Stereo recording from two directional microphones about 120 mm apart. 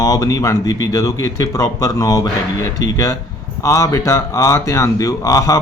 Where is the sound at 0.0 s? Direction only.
30° left (ahead or behind).